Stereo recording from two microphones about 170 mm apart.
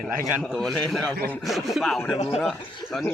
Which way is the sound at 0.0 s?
5° right (ahead or behind).